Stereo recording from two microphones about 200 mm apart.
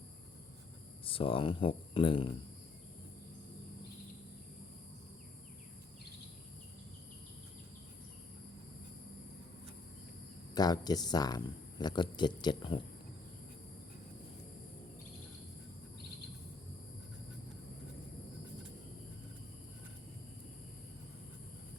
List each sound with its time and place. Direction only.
1.0 s speech: 25° left (ahead or behind)
10.5 s speech: 20° left (ahead or behind)